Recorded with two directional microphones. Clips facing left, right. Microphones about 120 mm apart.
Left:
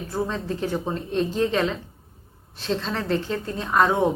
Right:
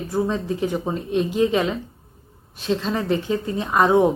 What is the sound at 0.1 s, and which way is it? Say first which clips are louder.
Speech: right 4 dB; 15° right (ahead or behind).